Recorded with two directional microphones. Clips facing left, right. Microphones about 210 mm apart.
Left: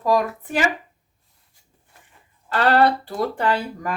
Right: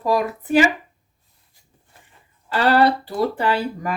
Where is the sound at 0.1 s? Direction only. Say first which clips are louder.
Right 2 dB; 10° right (ahead or behind).